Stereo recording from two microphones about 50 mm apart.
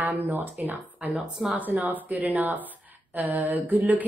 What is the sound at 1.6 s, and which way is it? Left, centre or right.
A woman's voice, right.